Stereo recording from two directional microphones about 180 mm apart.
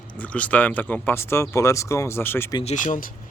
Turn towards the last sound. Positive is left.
turn(degrees=45)  # may be behind; listen again after turning